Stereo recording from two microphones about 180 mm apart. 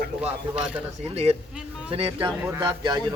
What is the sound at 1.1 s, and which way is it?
Speech, 35° right (ahead or behind).